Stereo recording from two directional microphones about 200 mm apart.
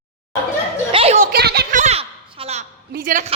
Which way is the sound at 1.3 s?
50° right (ahead or behind).